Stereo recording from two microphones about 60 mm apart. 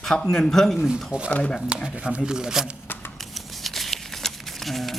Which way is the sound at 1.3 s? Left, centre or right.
Left.